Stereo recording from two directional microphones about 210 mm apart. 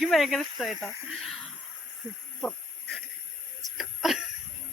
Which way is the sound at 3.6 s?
Centre (ahead or behind).